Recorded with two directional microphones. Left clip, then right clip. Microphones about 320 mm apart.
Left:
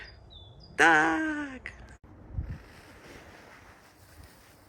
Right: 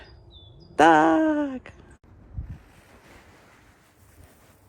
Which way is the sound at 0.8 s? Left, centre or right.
Centre.